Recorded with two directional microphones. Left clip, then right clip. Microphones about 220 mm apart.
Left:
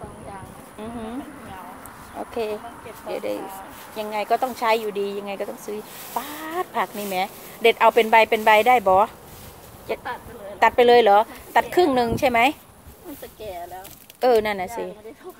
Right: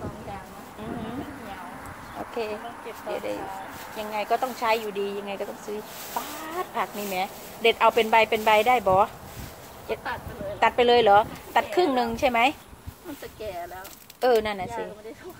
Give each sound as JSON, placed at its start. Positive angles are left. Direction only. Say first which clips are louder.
{"t": 2.1, "sound": "a sound", "louder": "left 4 dB", "side_deg": 35}
{"t": 3.1, "sound": "speech", "louder": "left 3 dB", "side_deg": 35}
{"t": 14.2, "sound": "speech", "louder": "left 3 dB", "side_deg": 40}